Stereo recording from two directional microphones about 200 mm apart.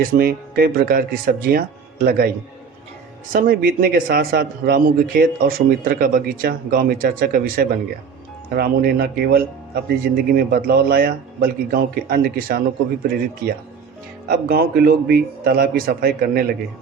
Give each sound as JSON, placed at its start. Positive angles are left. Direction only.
{"t": 0.0, "sound": "speech", "side_deg": -50}
{"t": 3.3, "sound": "speech", "side_deg": -45}
{"t": 14.3, "sound": "speech", "side_deg": -50}